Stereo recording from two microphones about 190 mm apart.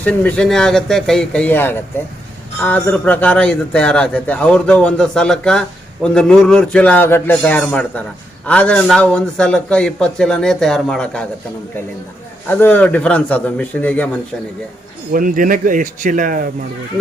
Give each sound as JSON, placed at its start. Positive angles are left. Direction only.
{"t": 0.0, "sound": "a man's voice", "side_deg": 5}
{"t": 12.5, "sound": "a man's voice", "side_deg": 10}
{"t": 15.1, "sound": "speech", "side_deg": -45}